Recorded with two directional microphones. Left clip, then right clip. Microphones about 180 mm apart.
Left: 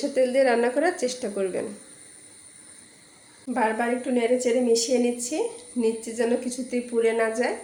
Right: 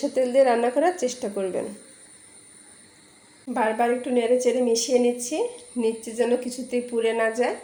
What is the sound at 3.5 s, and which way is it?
A woman's voice, 10° right (ahead or behind).